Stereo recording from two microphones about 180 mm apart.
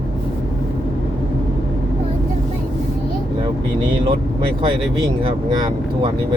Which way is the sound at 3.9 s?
30° right (ahead or behind).